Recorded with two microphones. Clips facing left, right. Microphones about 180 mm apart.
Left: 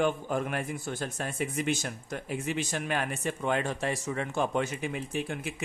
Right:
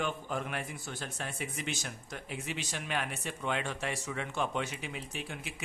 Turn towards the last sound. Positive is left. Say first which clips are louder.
# left 8 dB
turn(degrees=50)  # may be behind; listen again after turning